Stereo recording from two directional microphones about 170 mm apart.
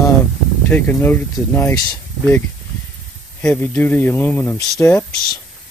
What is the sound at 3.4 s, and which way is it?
Speech, 10° left (ahead or behind).